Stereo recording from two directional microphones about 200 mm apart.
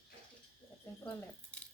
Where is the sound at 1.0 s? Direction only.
5° left (ahead or behind).